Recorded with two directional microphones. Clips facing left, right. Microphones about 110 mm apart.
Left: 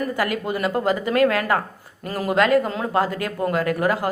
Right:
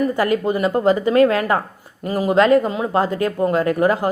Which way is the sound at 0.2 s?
25° right (ahead or behind).